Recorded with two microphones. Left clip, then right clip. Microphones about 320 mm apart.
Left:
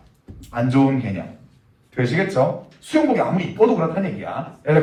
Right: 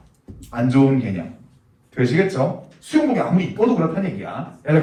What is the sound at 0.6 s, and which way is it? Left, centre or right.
Speech, left.